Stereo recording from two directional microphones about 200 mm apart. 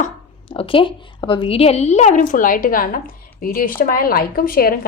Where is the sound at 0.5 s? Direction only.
25° left (ahead or behind); by 4.9 s 45° left (ahead or behind).